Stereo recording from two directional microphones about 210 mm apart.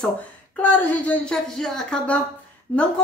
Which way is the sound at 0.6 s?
10° left (ahead or behind).